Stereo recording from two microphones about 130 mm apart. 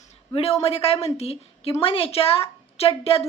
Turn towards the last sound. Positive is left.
turn(degrees=50)  # may be behind; listen again after turning